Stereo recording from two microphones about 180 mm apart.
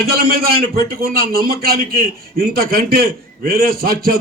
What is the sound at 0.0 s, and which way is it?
A man's voice, 55° right (ahead or behind).